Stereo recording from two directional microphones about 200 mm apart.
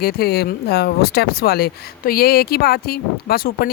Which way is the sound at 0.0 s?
50° left (ahead or behind).